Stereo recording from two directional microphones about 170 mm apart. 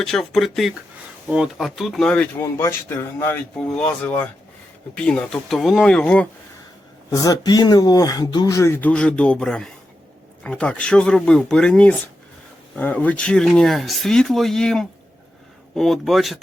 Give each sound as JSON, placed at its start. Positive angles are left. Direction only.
{"t": 0.0, "sound": "speech", "side_deg": 0}
{"t": 7.1, "sound": "speech", "side_deg": 20}